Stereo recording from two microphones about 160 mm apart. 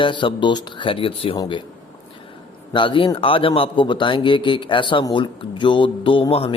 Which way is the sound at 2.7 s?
30° left (ahead or behind).